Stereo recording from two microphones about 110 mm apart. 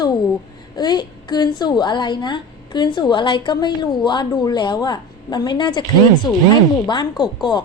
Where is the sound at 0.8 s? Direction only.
40° left (ahead or behind).